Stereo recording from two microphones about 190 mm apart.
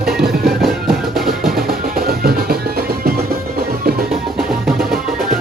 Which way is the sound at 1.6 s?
50° right (ahead or behind).